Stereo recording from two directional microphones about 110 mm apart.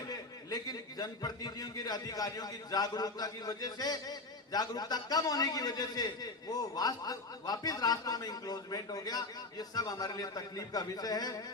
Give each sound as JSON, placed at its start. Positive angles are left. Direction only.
{"t": 0.1, "sound": "a man's voice", "side_deg": 35}